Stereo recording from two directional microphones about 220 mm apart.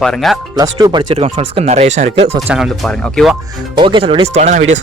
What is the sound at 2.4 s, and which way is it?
Speech, 5° right (ahead or behind).